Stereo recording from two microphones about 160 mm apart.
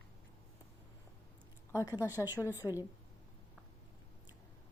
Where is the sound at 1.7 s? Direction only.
20° left (ahead or behind).